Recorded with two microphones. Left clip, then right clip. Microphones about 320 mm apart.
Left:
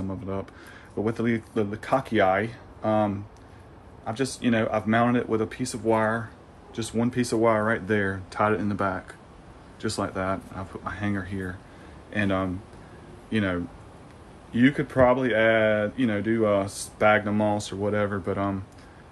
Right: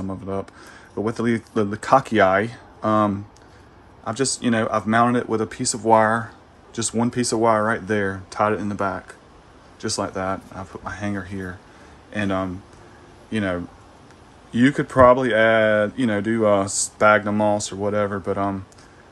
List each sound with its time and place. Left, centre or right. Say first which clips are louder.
0.3 s speech: right 5 dB; centre